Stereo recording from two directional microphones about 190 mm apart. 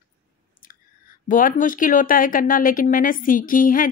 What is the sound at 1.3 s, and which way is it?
Speech, 45° left (ahead or behind).